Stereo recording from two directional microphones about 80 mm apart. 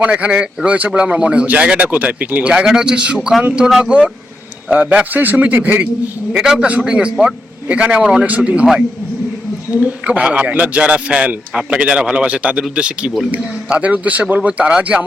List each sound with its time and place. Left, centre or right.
0.0 s a man's voice: centre
6.3 s a man's voice: centre
9.7 s a man's voice: centre